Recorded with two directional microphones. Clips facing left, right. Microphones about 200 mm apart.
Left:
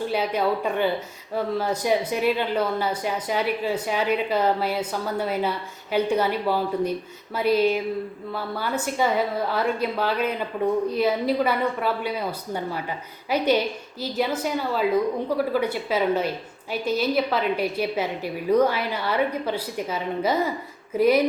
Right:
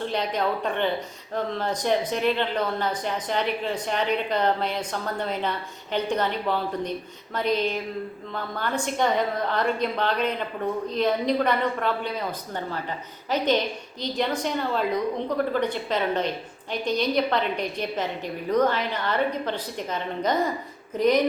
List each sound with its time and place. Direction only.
0.0 s speech: 5° left (ahead or behind)